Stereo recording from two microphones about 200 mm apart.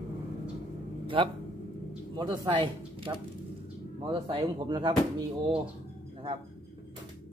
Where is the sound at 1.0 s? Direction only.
25° right (ahead or behind).